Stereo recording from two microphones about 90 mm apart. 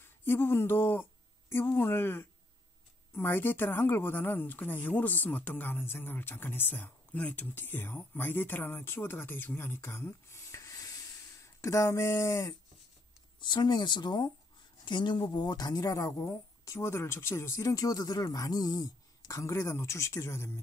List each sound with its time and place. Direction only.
0.0 s speech: 25° left (ahead or behind)
13.4 s speech: 55° left (ahead or behind); by 20.6 s 30° left (ahead or behind)